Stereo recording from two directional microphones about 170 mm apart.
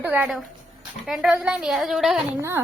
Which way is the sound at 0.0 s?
5° right (ahead or behind).